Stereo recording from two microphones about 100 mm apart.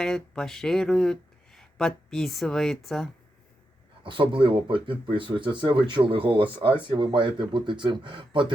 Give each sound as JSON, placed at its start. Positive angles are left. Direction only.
{"t": 0.0, "sound": "speech", "side_deg": 5}
{"t": 4.0, "sound": "speech", "side_deg": -55}